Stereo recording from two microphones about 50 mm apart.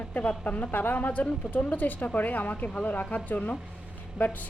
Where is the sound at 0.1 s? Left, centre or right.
Left.